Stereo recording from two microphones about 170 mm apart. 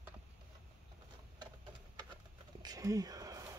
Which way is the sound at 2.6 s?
20° right (ahead or behind).